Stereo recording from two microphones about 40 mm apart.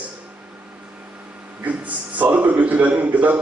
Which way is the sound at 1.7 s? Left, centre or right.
Right.